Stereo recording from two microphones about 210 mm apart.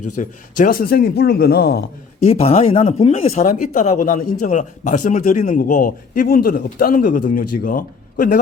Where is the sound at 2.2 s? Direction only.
30° left (ahead or behind).